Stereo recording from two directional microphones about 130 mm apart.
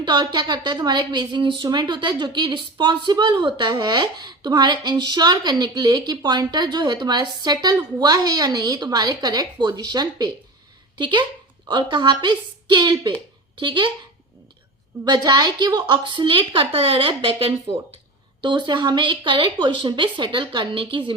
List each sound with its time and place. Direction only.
0.0 s a woman's voice: 35° right (ahead or behind)
15.0 s a woman's voice: 35° right (ahead or behind)